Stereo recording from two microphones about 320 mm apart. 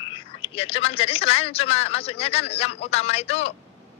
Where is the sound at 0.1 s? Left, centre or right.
Centre.